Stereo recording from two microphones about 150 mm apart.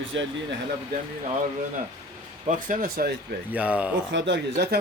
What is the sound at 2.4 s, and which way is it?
Speech, 70° right (ahead or behind).